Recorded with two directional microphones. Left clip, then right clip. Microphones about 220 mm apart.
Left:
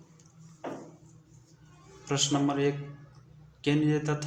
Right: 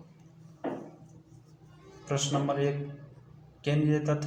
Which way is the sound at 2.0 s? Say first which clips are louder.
Left 2 dB; 35° left (ahead or behind).